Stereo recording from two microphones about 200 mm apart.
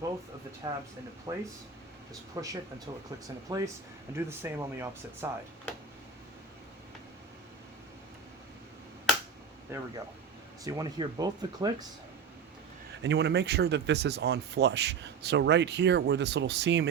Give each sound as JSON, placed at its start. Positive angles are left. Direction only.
{"t": 0.6, "sound": "speech", "side_deg": -20}
{"t": 9.7, "sound": "speech", "side_deg": -15}
{"t": 13.0, "sound": "speech", "side_deg": -60}